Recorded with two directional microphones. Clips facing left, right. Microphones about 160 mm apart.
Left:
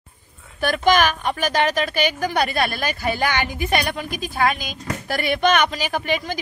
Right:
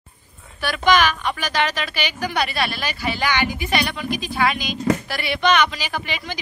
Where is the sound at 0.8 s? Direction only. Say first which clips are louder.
Even; 45° left (ahead or behind).